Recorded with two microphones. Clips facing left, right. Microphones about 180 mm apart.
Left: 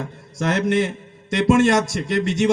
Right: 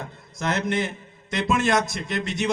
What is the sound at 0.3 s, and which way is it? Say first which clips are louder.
Speech: left 5 dB; 90° left.